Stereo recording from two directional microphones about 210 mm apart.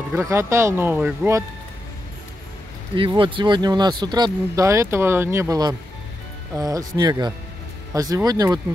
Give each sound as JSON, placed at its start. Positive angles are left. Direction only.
{"t": 0.1, "sound": "speech", "side_deg": -10}
{"t": 3.0, "sound": "speech", "side_deg": -25}